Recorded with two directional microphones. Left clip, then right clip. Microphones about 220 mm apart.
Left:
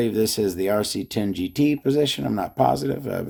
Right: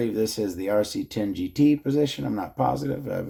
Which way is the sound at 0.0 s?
45° left (ahead or behind).